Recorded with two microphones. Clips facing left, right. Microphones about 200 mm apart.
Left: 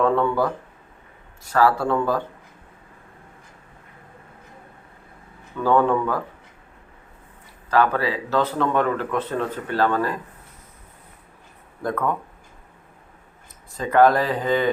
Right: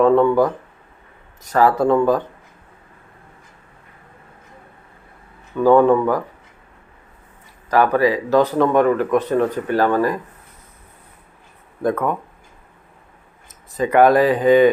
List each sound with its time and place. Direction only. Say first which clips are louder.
0.0 s speech: right 6 dB; 20° right (ahead or behind)
5.6 s speech: right 6 dB; 15° right (ahead or behind)
7.7 s speech: right 5 dB; 15° right (ahead or behind)
11.8 s speech: right 5 dB; 20° right (ahead or behind)
13.7 s speech: right 4 dB; 20° right (ahead or behind)